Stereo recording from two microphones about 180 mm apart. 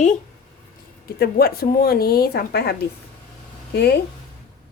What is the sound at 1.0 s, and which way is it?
Speech, 60° left (ahead or behind).